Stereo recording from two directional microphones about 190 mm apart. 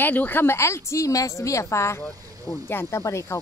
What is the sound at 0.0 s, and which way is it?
A woman's voice, 10° left (ahead or behind).